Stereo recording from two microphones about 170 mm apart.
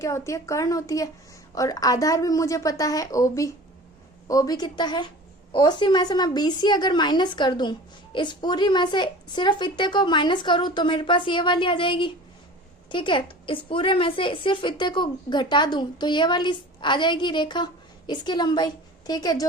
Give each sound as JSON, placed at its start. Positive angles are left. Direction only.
{"t": 0.0, "sound": "a woman's voice", "side_deg": 20}